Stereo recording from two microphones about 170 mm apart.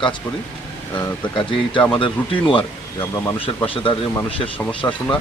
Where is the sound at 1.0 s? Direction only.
30° left (ahead or behind).